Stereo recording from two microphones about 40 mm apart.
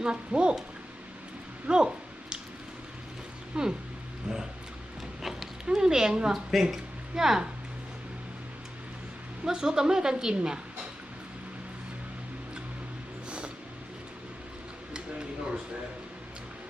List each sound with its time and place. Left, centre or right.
0.0 s a woman's voice: right
1.6 s speech: right
3.5 s a woman's voice: centre
5.2 s a sound: centre
5.6 s a woman's voice: centre
6.5 s speech: centre
7.2 s a woman's voice: centre
9.4 s a woman's voice: centre
14.9 s a sound: right